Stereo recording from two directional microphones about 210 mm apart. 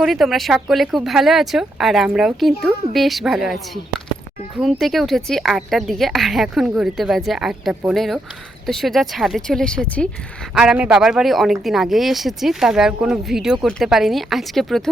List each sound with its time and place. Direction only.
0.0 s speech: centre (ahead or behind)